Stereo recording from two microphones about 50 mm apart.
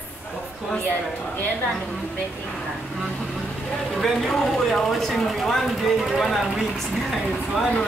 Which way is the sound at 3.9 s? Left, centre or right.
Centre.